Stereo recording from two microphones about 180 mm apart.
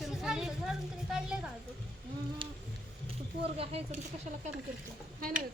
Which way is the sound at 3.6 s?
35° right (ahead or behind).